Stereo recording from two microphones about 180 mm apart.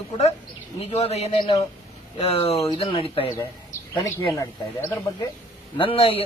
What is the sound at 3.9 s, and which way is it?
Speech, 15° left (ahead or behind).